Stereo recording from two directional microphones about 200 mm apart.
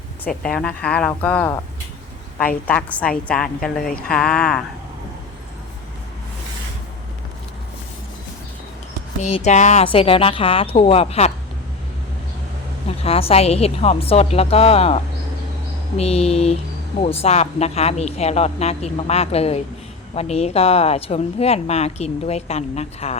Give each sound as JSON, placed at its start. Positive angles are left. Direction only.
{"t": 0.3, "sound": "speech", "side_deg": 5}
{"t": 2.6, "sound": "speech", "side_deg": 5}
{"t": 9.2, "sound": "speech", "side_deg": 35}
{"t": 12.9, "sound": "speech", "side_deg": 30}